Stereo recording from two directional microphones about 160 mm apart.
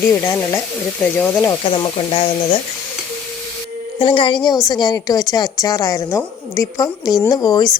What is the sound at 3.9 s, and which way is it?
A woman's voice, 35° left (ahead or behind).